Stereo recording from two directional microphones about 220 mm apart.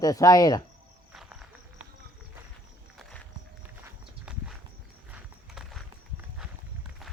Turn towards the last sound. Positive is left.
turn(degrees=0)  # may be behind; listen again after turning